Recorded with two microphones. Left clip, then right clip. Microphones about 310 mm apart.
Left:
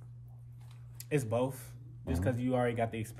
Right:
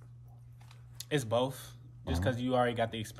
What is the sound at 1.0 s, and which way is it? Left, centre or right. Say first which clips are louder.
Speech: right 1 dB; centre.